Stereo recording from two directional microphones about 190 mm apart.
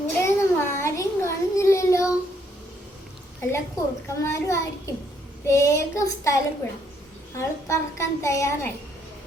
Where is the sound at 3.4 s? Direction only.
15° left (ahead or behind).